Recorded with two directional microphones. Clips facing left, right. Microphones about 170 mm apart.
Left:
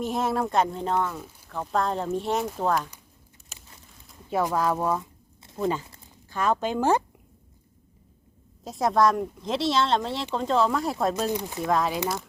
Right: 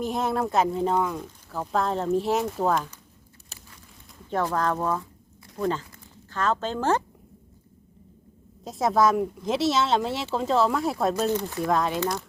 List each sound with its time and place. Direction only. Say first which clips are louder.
0.0 s speech: even; centre (ahead or behind)
4.3 s speech: left 1 dB; 10° left (ahead or behind)
5.6 s speech: even; 25° left (ahead or behind)
6.3 s speech: left 1 dB; 15° left (ahead or behind)
8.6 s speech: even; centre (ahead or behind)
11.3 s speech: right 2 dB; 15° left (ahead or behind)
11.6 s speech: left 1 dB; centre (ahead or behind)